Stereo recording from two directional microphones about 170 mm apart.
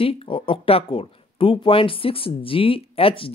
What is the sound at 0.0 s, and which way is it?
Speech, 30° left (ahead or behind).